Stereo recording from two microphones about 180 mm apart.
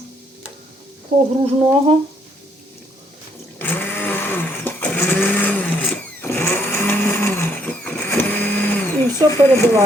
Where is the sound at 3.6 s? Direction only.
10° left (ahead or behind).